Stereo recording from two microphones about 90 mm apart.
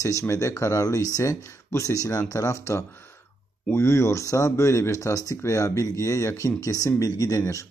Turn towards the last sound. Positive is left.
turn(degrees=35)  # may be behind; listen again after turning